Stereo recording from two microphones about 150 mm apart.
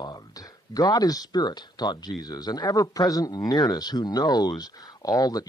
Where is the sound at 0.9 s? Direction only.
25° left (ahead or behind).